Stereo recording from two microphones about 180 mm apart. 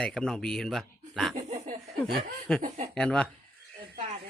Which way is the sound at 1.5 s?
45° right (ahead or behind).